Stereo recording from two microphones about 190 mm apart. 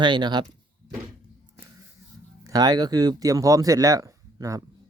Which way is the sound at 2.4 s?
20° right (ahead or behind).